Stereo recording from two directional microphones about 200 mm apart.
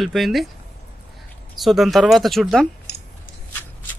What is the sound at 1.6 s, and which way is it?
Speech, centre (ahead or behind).